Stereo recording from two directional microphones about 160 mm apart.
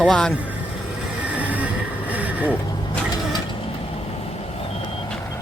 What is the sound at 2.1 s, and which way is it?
Vehicle, 10° right (ahead or behind).